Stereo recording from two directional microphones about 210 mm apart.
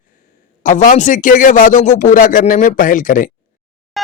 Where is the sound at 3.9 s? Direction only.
Centre (ahead or behind).